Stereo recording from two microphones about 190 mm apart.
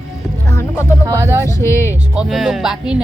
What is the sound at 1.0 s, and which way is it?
Speech, 15° right (ahead or behind).